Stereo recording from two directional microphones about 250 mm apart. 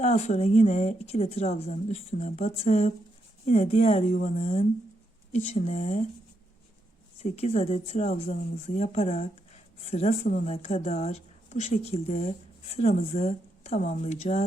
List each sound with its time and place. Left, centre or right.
0.0 s speech: left
7.2 s speech: left